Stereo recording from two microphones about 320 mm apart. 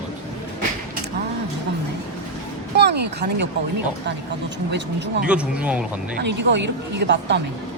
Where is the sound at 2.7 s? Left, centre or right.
Right.